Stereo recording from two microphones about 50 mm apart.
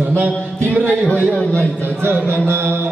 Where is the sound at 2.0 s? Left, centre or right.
Right.